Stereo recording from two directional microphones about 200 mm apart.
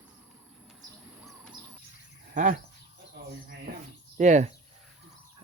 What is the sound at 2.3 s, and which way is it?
Speech, 40° right (ahead or behind).